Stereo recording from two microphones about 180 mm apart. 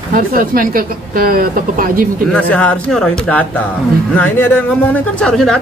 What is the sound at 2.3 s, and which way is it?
Speech, 5° left (ahead or behind).